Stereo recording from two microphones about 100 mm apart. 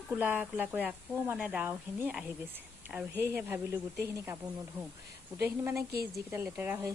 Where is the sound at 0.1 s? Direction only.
15° right (ahead or behind).